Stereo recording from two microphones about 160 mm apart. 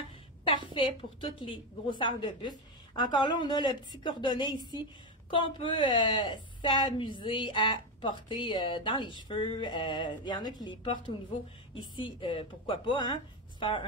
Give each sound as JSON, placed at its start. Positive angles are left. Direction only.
{"t": 0.7, "sound": "a woman's voice", "side_deg": 35}